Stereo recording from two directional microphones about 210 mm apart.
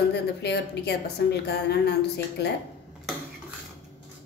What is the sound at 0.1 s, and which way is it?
A woman's voice, 55° left (ahead or behind).